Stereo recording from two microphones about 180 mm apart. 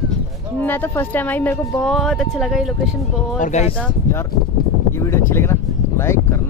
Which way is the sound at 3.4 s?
40° left (ahead or behind).